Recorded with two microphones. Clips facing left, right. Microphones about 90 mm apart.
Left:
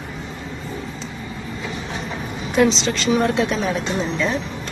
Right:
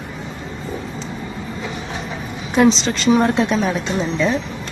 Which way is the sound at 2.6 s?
30° right (ahead or behind).